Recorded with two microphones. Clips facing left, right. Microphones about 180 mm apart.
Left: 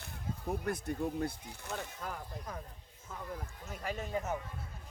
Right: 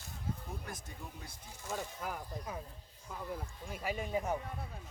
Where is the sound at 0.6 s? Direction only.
60° left (ahead or behind).